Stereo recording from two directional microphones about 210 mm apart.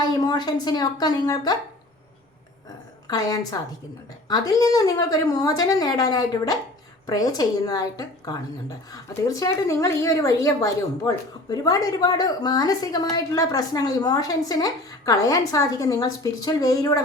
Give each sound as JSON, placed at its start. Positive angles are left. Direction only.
{"t": 0.0, "sound": "a woman's voice", "side_deg": 20}
{"t": 3.1, "sound": "a woman's voice", "side_deg": 15}